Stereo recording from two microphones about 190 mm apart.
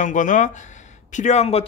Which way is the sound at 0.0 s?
40° left (ahead or behind).